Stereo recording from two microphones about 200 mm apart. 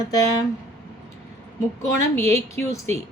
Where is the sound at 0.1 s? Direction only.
20° left (ahead or behind).